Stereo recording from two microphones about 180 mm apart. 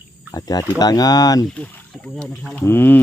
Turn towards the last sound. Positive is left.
turn(degrees=10)  # may be behind; listen again after turning